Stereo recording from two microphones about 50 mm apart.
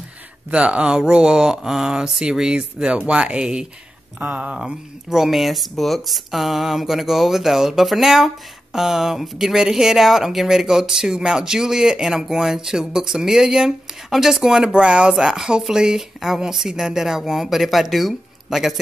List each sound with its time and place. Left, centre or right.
0.5 s speech: right
4.2 s speech: right
4.6 s speech: centre